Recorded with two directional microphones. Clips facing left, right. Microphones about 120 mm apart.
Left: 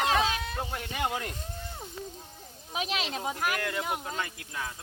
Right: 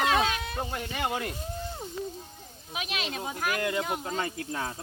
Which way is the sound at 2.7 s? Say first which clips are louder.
Left 2 dB; 30° left (ahead or behind).